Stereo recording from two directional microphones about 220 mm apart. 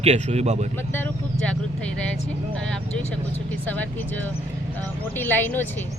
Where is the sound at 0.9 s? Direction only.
5° left (ahead or behind).